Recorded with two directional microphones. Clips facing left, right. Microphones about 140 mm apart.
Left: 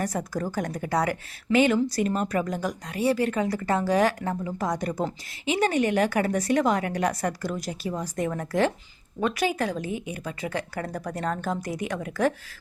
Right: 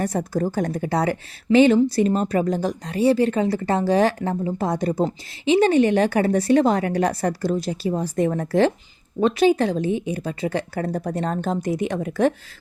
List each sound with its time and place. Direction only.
0.0 s a woman's voice: 30° right (ahead or behind)